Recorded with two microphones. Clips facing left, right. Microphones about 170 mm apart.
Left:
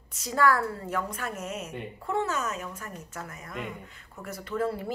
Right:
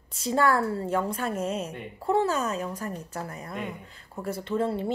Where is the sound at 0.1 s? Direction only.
30° right (ahead or behind).